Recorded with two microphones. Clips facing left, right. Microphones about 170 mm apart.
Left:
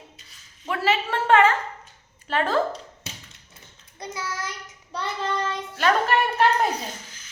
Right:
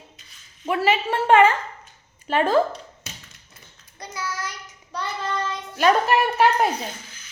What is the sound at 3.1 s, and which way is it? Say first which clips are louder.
Tap: left 1 dB; 30° left (ahead or behind).